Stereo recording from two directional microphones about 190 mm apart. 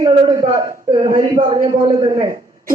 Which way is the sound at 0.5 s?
20° right (ahead or behind).